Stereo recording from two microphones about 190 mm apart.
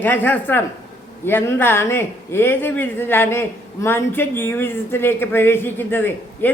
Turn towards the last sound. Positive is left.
turn(degrees=10)  # may be behind; listen again after turning